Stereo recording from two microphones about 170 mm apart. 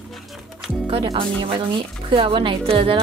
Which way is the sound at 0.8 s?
30° right (ahead or behind).